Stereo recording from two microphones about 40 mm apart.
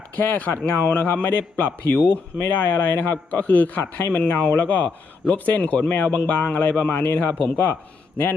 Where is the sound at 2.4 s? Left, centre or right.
Left.